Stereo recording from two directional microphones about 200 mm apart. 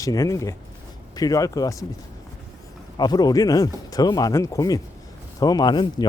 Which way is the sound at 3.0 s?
20° left (ahead or behind).